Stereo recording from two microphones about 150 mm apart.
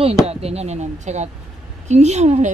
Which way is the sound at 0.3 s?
45° right (ahead or behind).